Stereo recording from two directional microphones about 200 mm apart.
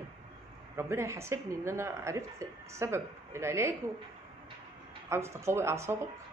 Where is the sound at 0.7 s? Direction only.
15° right (ahead or behind).